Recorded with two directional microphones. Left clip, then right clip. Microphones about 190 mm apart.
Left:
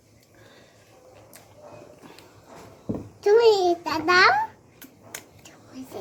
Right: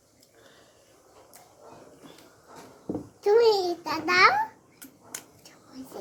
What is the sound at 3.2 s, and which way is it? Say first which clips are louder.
A child's voice: left 3 dB; 20° left (ahead or behind).